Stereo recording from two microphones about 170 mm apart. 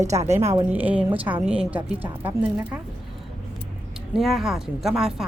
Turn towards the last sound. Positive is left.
turn(degrees=0)  # may be behind; listen again after turning